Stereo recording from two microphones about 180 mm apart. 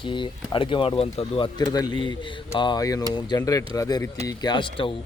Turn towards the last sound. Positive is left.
turn(degrees=25)  # may be behind; listen again after turning